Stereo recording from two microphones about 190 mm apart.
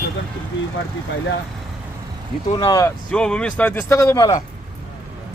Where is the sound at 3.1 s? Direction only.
5° left (ahead or behind); by 4.4 s 20° left (ahead or behind).